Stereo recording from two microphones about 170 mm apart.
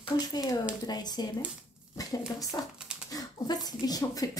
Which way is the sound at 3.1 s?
25° left (ahead or behind).